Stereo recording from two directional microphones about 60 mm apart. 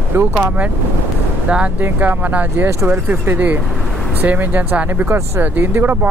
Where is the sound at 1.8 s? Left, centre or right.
Right.